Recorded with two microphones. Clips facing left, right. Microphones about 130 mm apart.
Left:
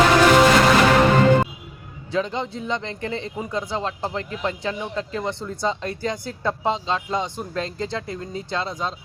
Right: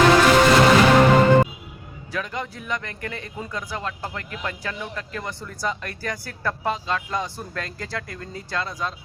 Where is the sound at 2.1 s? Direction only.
25° left (ahead or behind).